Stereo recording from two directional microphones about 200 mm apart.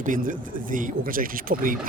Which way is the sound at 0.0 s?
40° right (ahead or behind).